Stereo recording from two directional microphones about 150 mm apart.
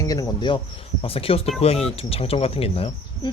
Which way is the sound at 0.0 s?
25° left (ahead or behind).